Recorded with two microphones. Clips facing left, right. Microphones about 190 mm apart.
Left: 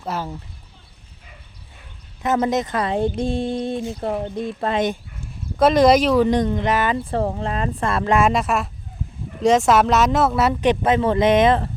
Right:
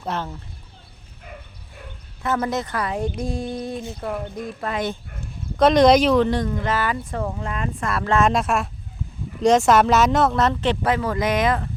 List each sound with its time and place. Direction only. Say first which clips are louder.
0.0 s speech: even; 5° left (ahead or behind)
2.2 s speech: left 4 dB; 20° left (ahead or behind)
5.5 s speech: even; 5° left (ahead or behind)
6.2 s speech: left 4 dB; 20° left (ahead or behind)
8.1 s speech: even; 5° left (ahead or behind); by 11.7 s 25° left (ahead or behind)